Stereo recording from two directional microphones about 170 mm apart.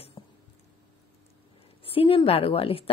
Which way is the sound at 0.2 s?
25° left (ahead or behind).